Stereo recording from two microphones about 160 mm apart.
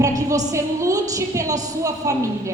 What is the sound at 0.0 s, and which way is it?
A woman's voice, 20° right (ahead or behind).